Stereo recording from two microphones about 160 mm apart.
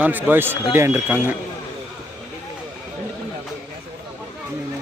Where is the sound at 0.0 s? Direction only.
10° right (ahead or behind).